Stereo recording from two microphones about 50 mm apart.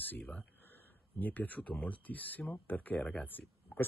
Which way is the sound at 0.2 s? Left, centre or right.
Left.